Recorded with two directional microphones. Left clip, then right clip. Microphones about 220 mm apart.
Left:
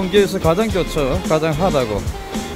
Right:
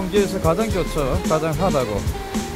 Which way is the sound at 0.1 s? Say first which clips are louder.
Left 4 dB; 15° left (ahead or behind).